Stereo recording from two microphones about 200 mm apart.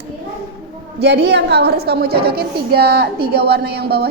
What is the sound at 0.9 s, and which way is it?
A woman's voice, 55° right (ahead or behind).